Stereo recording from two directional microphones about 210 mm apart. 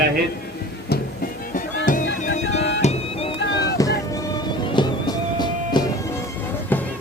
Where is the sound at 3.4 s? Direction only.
55° left (ahead or behind).